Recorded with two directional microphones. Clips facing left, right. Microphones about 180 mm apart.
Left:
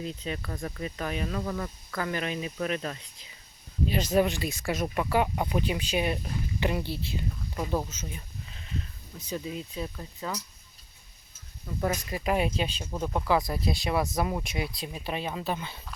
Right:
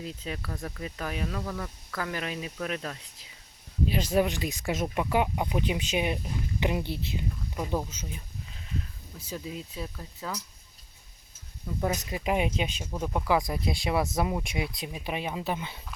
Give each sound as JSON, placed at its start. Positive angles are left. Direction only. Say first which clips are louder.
{"t": 0.0, "sound": "speech", "louder": "left 2 dB", "side_deg": -5}
{"t": 0.5, "sound": "speech", "louder": "left 2 dB", "side_deg": 10}
{"t": 4.1, "sound": "speech", "louder": "left 2 dB", "side_deg": -10}
{"t": 7.9, "sound": "a sound", "louder": "even", "side_deg": -10}
{"t": 9.1, "sound": "speech", "louder": "left 3 dB", "side_deg": -5}
{"t": 11.8, "sound": "speech", "louder": "even", "side_deg": -10}
{"t": 12.8, "sound": "speech", "louder": "left 1 dB", "side_deg": -5}
{"t": 13.2, "sound": "speech", "louder": "even", "side_deg": -15}